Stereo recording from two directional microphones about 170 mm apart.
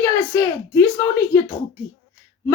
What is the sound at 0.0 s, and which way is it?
Speech, 20° left (ahead or behind).